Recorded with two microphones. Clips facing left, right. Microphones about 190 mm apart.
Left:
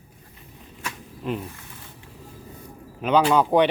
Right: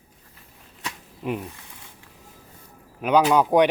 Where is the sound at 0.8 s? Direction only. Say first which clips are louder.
Even; 15° right (ahead or behind).